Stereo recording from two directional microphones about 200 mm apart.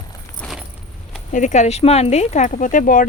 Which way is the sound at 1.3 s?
35° left (ahead or behind).